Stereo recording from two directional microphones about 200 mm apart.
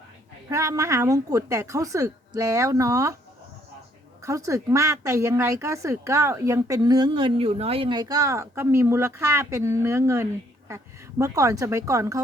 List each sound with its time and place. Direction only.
0.5 s speech: 15° right (ahead or behind)
4.2 s speech: 15° right (ahead or behind)